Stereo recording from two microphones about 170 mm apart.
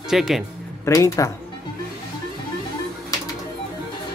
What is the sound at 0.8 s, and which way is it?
Speech, 20° left (ahead or behind).